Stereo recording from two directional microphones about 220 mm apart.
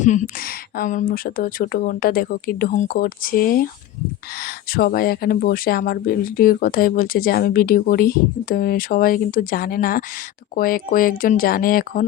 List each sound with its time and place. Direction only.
0.0 s speech: 35° left (ahead or behind)